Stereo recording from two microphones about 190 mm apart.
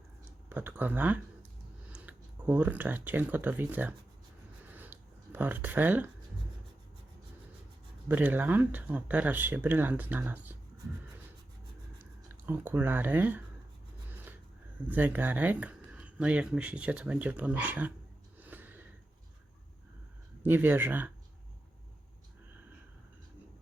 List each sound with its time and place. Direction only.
0.5 s speech: 10° right (ahead or behind)
4.7 s a sound: 10° right (ahead or behind)
8.0 s speech: 10° right (ahead or behind)
11.9 s speech: 10° right (ahead or behind)
14.8 s speech: 10° right (ahead or behind)
18.3 s a sound: 10° right (ahead or behind)
20.4 s speech: 10° right (ahead or behind)